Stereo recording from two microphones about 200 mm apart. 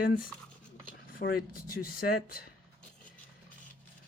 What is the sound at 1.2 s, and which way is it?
Speech, 45° left (ahead or behind).